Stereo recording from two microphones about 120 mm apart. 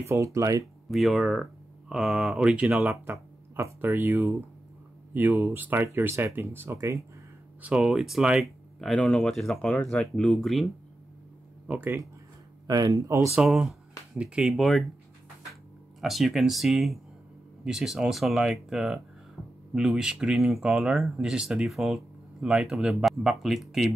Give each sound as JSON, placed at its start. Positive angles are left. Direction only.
{"t": 0.0, "sound": "speech", "side_deg": -25}
{"t": 0.8, "sound": "speech", "side_deg": 0}
{"t": 3.1, "sound": "speech", "side_deg": -20}
{"t": 7.6, "sound": "speech", "side_deg": -5}
{"t": 11.6, "sound": "speech", "side_deg": -15}
{"t": 12.6, "sound": "speech", "side_deg": -30}
{"t": 13.3, "sound": "speech", "side_deg": -5}
{"t": 16.0, "sound": "speech", "side_deg": 0}